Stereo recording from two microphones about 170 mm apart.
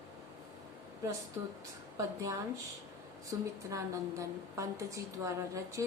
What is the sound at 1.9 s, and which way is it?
Speech, 20° right (ahead or behind).